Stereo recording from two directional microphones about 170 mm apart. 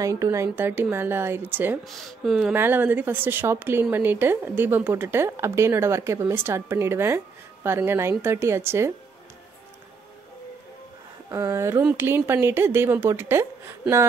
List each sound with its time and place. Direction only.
0.2 s speech: 15° right (ahead or behind)
1.9 s speech: centre (ahead or behind); by 8.9 s 15° right (ahead or behind)
11.2 s speech: 15° right (ahead or behind)